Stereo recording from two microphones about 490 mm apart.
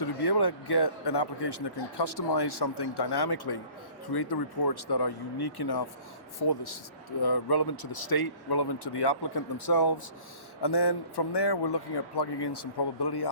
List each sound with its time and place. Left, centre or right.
0.0 s a man's voice: left